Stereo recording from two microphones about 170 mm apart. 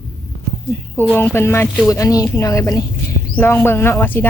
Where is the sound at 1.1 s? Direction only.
15° left (ahead or behind).